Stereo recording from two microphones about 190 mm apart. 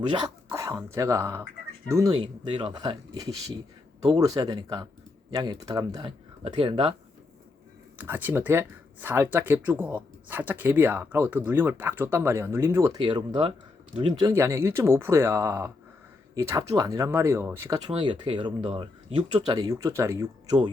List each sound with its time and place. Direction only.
0.1 s speech: 20° right (ahead or behind)
7.9 s speech: 10° right (ahead or behind)